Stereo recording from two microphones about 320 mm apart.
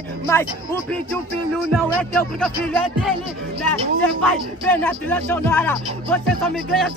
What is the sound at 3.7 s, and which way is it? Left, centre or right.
Speech, centre.